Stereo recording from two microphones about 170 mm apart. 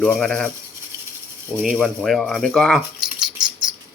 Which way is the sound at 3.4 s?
25° right (ahead or behind).